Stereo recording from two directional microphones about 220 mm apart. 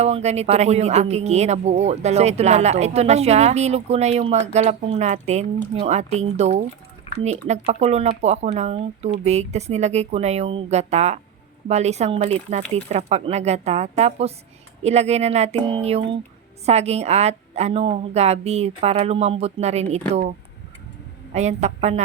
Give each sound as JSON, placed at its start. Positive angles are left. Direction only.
{"t": 0.0, "sound": "speech", "side_deg": -30}
{"t": 21.3, "sound": "speech", "side_deg": -30}